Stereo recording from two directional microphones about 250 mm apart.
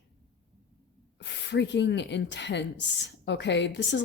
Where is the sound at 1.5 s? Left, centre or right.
Left.